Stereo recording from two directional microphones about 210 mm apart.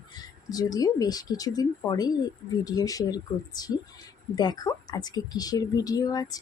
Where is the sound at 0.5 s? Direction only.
15° left (ahead or behind).